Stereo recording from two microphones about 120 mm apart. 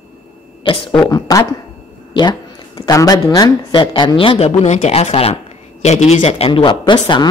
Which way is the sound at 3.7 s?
45° left (ahead or behind).